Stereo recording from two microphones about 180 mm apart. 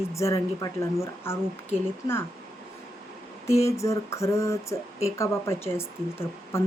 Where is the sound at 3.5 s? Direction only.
15° left (ahead or behind).